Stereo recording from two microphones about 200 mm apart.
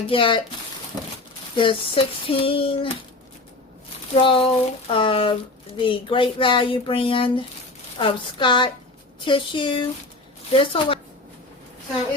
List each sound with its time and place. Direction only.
0.1 s speech: 25° left (ahead or behind)
1.5 s speech: 25° left (ahead or behind)
4.1 s speech: 25° left (ahead or behind)